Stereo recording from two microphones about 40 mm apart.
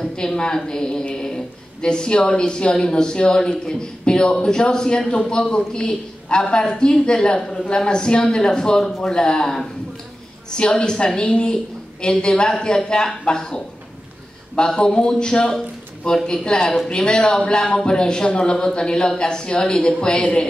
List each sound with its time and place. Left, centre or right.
0.0 s a woman's voice: centre
14.8 s a woman's voice: left